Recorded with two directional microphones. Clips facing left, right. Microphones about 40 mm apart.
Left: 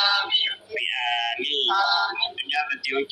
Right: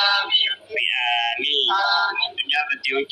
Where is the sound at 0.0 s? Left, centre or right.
Right.